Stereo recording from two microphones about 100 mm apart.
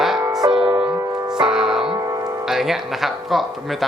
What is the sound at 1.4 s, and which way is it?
Music, 5° right (ahead or behind).